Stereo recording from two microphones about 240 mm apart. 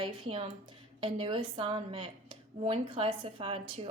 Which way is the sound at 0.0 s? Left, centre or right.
Right.